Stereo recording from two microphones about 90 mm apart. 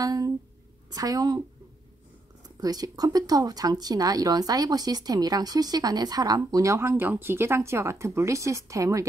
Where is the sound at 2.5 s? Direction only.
45° right (ahead or behind).